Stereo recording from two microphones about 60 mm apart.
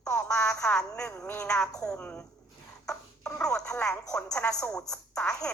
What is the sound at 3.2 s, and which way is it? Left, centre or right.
Speech, centre.